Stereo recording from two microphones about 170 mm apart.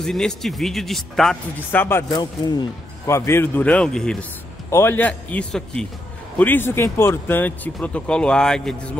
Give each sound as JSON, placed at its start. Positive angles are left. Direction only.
{"t": 0.0, "sound": "speech", "side_deg": 5}
{"t": 2.1, "sound": "speech", "side_deg": 25}
{"t": 4.6, "sound": "speech", "side_deg": 15}